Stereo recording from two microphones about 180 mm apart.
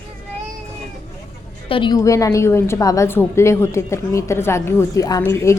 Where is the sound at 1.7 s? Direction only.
25° left (ahead or behind).